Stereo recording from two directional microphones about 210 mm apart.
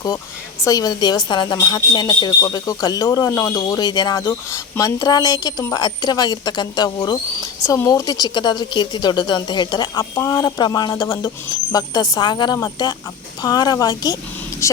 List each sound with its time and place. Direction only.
0.6 s speech: 15° left (ahead or behind)